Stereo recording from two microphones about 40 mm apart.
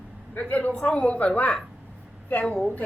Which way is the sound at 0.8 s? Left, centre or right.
Left.